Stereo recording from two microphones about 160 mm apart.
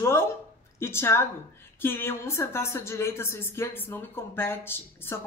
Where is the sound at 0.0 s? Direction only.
15° left (ahead or behind).